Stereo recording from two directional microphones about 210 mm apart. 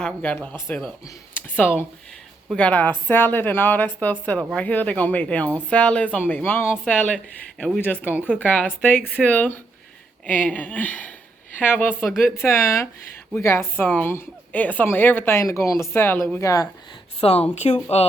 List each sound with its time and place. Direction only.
0.0 s speech: 5° left (ahead or behind)
1.5 s a woman's voice: 5° left (ahead or behind)
17.2 s speech: 30° left (ahead or behind)